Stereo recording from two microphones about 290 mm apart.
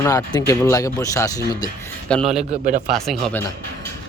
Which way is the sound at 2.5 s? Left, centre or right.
Right.